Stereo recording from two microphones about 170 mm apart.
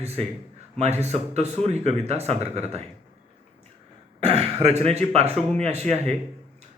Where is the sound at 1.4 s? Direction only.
40° right (ahead or behind).